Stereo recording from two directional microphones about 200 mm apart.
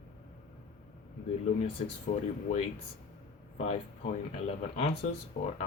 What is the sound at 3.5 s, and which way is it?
Speech, 30° left (ahead or behind).